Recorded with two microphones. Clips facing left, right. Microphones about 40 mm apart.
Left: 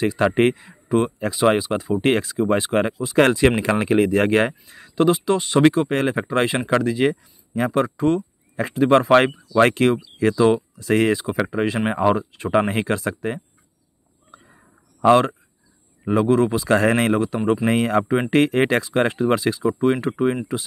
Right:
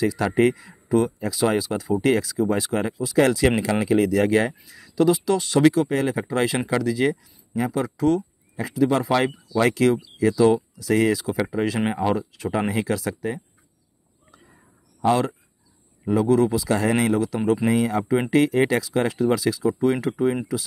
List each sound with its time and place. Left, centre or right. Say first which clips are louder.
0.0 s speech: left 2 dB; left
5.7 s speech: left 1 dB; left
7.5 s speech: left 4 dB; left
7.8 s speech: right 1 dB; left
8.5 s speech: left 5 dB; left
11.9 s speech: left 4 dB; left
12.2 s speech: left 2 dB; left
12.5 s speech: left 4 dB; left
14.4 s a sound: left 2 dB; left
16.1 s speech: left 1 dB; left
17.6 s speech: left 2 dB; left
18.9 s speech: left 2 dB; left